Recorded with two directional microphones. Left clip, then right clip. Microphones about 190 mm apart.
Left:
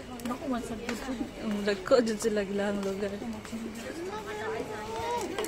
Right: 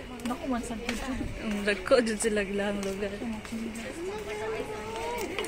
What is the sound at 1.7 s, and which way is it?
A man's voice, 5° left (ahead or behind).